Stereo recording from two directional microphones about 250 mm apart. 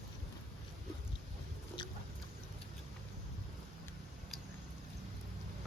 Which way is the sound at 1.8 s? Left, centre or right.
Centre.